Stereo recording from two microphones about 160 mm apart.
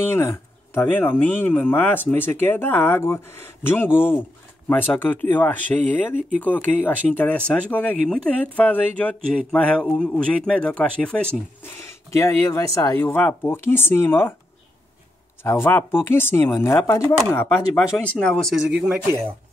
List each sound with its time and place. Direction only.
0.1 s speech: 15° left (ahead or behind)
12.2 s speech: 20° left (ahead or behind)
15.4 s speech: 15° left (ahead or behind)
18.2 s speech: 5° left (ahead or behind)